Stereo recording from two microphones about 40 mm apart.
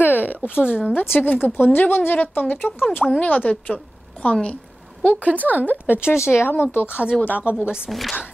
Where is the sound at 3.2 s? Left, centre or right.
Left.